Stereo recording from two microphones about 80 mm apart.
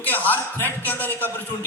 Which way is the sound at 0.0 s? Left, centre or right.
Left.